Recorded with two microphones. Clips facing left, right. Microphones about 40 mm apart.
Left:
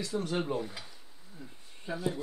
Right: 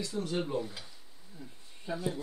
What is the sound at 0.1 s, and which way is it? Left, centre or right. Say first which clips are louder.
Speech: left 3 dB; left.